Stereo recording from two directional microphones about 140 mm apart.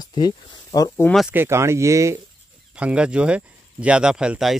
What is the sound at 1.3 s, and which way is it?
Speech, 15° right (ahead or behind).